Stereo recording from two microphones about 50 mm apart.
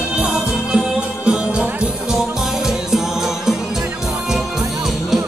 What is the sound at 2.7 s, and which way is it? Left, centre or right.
Music, centre.